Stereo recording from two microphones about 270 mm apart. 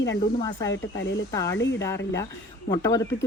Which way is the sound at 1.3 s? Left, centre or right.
Centre.